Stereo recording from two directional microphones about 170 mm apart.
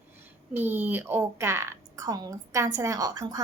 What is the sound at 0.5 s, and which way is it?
A woman's voice, 10° right (ahead or behind).